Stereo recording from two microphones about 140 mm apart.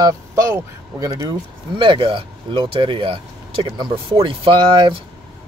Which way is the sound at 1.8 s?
40° right (ahead or behind).